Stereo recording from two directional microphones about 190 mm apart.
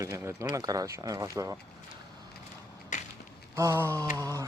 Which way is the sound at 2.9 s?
40° left (ahead or behind).